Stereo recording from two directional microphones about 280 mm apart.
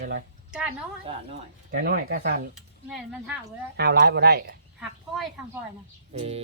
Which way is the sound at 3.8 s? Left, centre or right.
Right.